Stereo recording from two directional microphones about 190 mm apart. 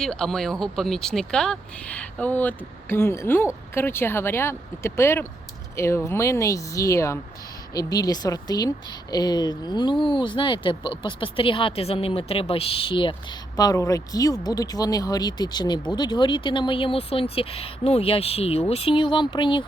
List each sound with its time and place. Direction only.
0.0 s a woman's voice: 5° left (ahead or behind); by 19.6 s 25° left (ahead or behind)